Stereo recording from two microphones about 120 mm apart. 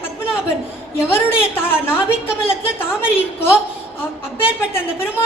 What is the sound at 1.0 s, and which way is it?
A woman's voice, 20° left (ahead or behind).